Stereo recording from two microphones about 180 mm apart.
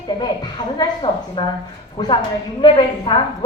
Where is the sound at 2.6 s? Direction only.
25° left (ahead or behind).